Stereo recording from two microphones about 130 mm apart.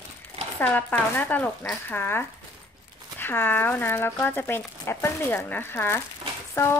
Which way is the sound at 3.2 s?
15° left (ahead or behind).